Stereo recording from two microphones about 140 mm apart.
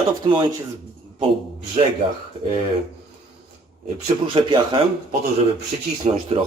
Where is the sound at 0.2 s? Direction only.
40° right (ahead or behind).